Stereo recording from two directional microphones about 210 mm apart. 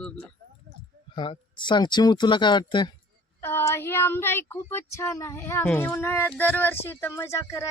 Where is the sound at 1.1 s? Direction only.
25° left (ahead or behind).